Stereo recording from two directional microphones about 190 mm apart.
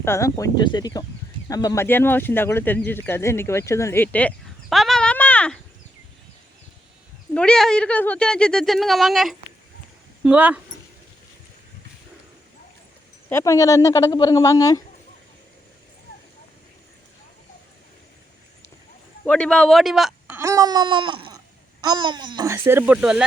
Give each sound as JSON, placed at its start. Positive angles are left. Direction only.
{"t": 0.0, "sound": "speech", "side_deg": 15}
{"t": 7.3, "sound": "speech", "side_deg": 5}
{"t": 13.3, "sound": "speech", "side_deg": 15}
{"t": 19.2, "sound": "speech", "side_deg": 5}